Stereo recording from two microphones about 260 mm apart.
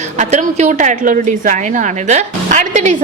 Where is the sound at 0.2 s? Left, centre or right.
Right.